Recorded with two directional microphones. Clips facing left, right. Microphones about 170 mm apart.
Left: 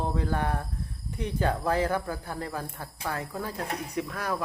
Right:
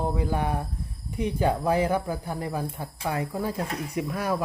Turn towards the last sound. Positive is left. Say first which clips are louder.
# right 4 dB
turn(degrees=-10)  # may be behind; listen again after turning